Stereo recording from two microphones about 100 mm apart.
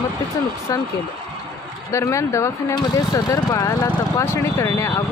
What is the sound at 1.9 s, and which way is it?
Speech, 30° left (ahead or behind).